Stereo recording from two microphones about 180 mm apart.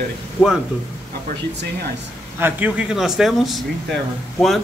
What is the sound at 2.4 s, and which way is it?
Speech, 10° right (ahead or behind).